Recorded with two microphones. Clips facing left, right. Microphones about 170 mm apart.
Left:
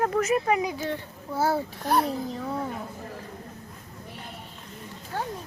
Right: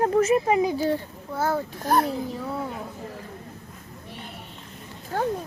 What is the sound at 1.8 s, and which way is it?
Speech, 45° right (ahead or behind).